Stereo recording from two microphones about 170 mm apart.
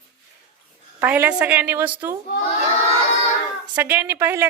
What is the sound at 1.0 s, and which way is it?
A woman's voice, 10° right (ahead or behind).